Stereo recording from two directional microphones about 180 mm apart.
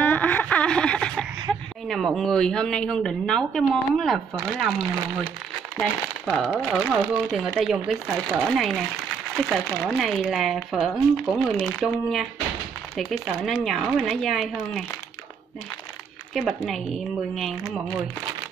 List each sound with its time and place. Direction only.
0.0 s speech: 10° left (ahead or behind)
16.3 s speech: centre (ahead or behind)